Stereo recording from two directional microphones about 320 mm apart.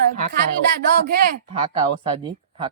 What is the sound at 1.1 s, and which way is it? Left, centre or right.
A woman's voice, right.